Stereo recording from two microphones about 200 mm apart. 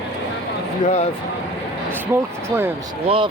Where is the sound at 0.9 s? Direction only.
30° left (ahead or behind).